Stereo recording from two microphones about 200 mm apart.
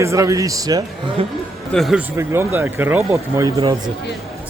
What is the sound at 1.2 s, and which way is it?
Speech, 30° right (ahead or behind).